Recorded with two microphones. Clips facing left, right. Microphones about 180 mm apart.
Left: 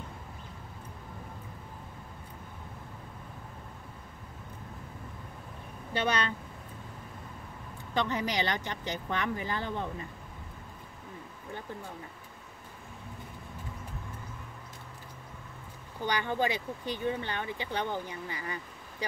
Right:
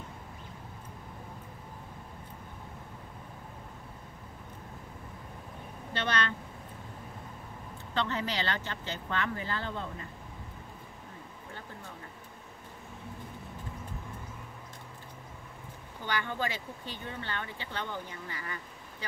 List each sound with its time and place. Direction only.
5.9 s speech: 10° left (ahead or behind)
7.9 s speech: 15° left (ahead or behind)
16.1 s speech: 15° left (ahead or behind)